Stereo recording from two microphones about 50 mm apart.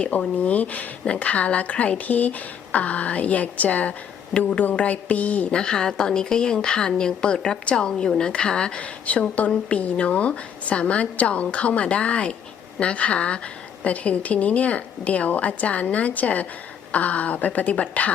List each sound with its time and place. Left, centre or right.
0.0 s a woman's voice: left
5.5 s a woman's voice: centre